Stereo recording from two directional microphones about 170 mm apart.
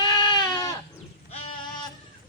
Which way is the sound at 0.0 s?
25° left (ahead or behind).